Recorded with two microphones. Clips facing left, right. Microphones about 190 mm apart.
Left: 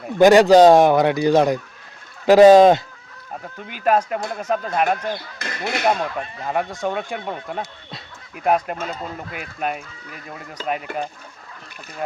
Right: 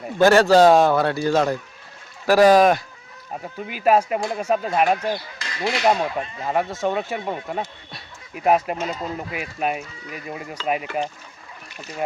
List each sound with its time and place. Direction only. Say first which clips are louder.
0.2 s speech: left 3 dB; 15° left (ahead or behind)
3.4 s speech: right 1 dB; 5° right (ahead or behind)
5.4 s speech: right 1 dB; 55° left (ahead or behind)
5.9 s speech: right 1 dB; 10° right (ahead or behind)